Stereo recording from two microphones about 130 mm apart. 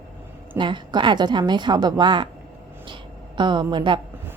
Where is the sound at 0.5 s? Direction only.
35° right (ahead or behind).